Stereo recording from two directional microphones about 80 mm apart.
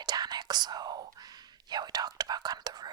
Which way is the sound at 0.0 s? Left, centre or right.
Right.